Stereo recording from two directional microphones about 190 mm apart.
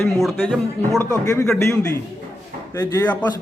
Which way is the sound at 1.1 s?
15° left (ahead or behind).